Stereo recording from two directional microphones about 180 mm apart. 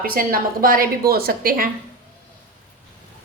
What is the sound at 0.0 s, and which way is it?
A woman's voice, 55° right (ahead or behind).